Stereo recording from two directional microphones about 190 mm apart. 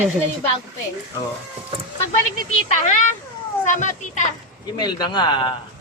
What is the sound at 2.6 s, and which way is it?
Speech, 40° left (ahead or behind).